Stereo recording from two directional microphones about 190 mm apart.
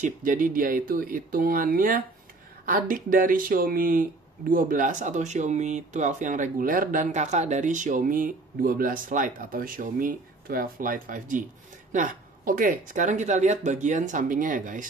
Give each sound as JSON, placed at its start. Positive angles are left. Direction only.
{"t": 0.0, "sound": "speech", "side_deg": -45}